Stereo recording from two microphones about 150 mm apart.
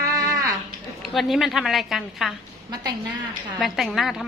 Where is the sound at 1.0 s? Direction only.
Centre (ahead or behind).